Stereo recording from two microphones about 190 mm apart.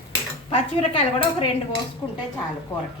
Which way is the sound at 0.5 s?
30° left (ahead or behind).